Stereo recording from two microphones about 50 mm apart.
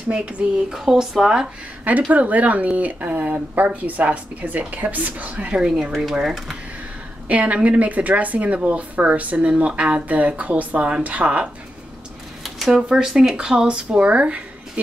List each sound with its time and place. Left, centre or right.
0.1 s speech: right
1.9 s speech: right
5.5 s speech: centre
7.2 s speech: right
12.4 s a sound: centre
12.8 s speech: centre